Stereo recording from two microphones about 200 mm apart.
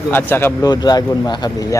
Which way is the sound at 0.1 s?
10° left (ahead or behind).